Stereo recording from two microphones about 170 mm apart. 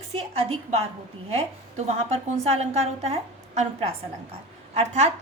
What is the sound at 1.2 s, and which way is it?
A woman's voice, 40° right (ahead or behind).